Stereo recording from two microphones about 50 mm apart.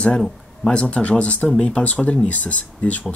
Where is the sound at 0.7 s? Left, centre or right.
Centre.